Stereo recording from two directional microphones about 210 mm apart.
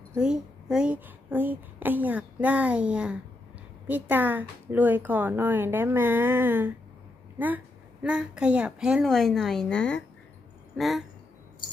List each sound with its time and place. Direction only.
0.1 s a woman's voice: 5° right (ahead or behind)